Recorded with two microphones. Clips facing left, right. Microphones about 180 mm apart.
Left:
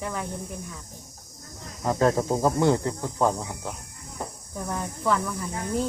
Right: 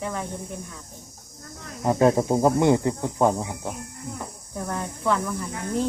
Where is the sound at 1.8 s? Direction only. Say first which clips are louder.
Right 3 dB; 15° right (ahead or behind).